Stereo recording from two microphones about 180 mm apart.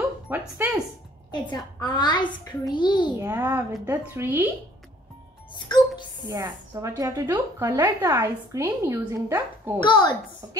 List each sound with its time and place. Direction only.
0.3 s a woman's voice: 10° right (ahead or behind)
1.3 s a child's voice: 25° left (ahead or behind)
3.2 s a woman's voice: 15° right (ahead or behind)
5.5 s music: 25° left (ahead or behind)
6.2 s a woman's voice: 20° right (ahead or behind)
9.8 s a child's voice: 25° left (ahead or behind)
10.4 s a woman's voice: 20° right (ahead or behind)